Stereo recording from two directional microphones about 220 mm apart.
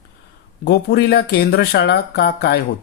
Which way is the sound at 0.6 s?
50° left (ahead or behind).